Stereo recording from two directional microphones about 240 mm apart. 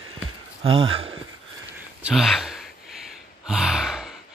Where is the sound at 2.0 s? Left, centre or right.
Centre.